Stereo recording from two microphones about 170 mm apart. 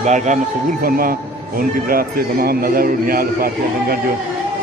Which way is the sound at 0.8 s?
55° right (ahead or behind).